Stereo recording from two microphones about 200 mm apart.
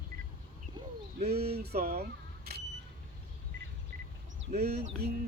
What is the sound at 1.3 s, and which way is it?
Speech, 50° right (ahead or behind).